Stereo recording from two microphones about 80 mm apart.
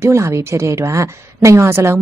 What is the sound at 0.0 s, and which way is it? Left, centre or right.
A woman's voice, right.